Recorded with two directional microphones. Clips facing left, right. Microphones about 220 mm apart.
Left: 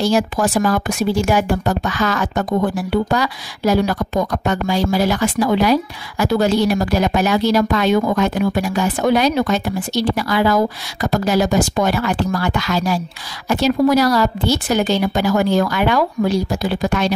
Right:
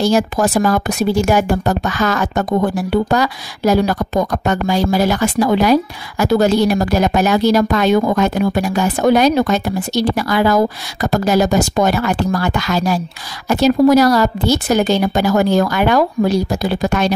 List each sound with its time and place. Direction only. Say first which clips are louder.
0.0 s speech: right 2 dB; 45° right (ahead or behind)